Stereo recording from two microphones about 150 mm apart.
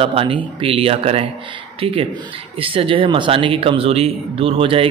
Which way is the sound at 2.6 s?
35° right (ahead or behind).